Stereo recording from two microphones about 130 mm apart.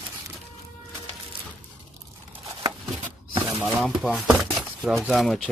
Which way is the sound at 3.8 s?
Centre (ahead or behind).